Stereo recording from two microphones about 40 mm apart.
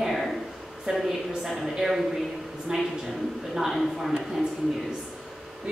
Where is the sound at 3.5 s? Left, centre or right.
Centre.